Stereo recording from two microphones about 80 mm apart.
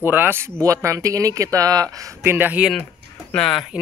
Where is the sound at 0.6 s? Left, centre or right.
Right.